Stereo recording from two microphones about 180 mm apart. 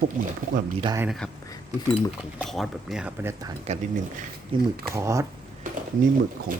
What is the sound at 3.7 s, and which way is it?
Speech, 35° right (ahead or behind).